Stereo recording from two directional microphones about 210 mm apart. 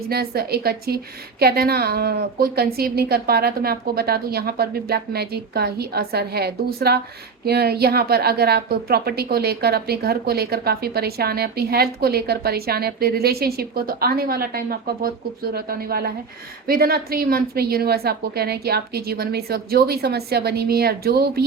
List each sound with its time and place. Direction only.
0.1 s a woman's voice: 50° right (ahead or behind)